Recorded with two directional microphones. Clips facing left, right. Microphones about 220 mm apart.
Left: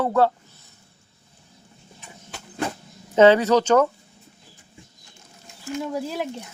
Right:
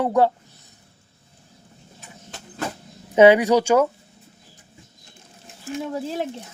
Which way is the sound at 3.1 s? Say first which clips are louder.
Right 1 dB; 10° right (ahead or behind).